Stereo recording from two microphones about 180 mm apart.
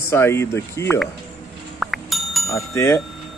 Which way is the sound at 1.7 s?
Centre (ahead or behind).